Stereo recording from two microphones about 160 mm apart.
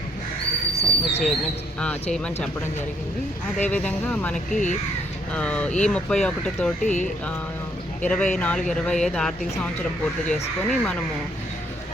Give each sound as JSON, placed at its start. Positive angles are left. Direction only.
{"t": 0.8, "sound": "speech", "side_deg": 40}
{"t": 1.8, "sound": "speech", "side_deg": 5}
{"t": 3.6, "sound": "speech", "side_deg": 10}
{"t": 4.5, "sound": "speech", "side_deg": 50}
{"t": 5.3, "sound": "speech", "side_deg": 5}
{"t": 6.8, "sound": "speech", "side_deg": 50}
{"t": 8.0, "sound": "speech", "side_deg": 5}